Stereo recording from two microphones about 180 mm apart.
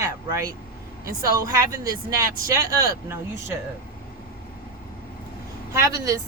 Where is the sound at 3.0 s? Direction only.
15° right (ahead or behind).